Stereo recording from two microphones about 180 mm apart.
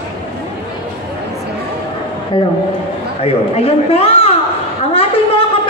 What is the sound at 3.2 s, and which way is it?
A woman's voice, 35° left (ahead or behind).